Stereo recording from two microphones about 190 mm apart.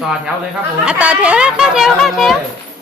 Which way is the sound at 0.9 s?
5° right (ahead or behind).